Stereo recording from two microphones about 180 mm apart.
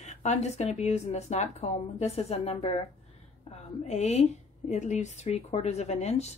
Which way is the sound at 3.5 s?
35° left (ahead or behind).